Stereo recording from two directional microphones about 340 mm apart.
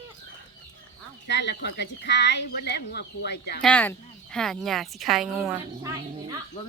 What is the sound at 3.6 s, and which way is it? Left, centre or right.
Speech, centre.